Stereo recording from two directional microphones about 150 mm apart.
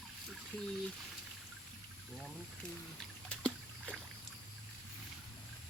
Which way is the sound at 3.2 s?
5° left (ahead or behind).